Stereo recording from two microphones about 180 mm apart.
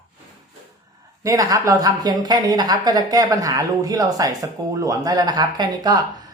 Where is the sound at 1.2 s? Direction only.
20° right (ahead or behind).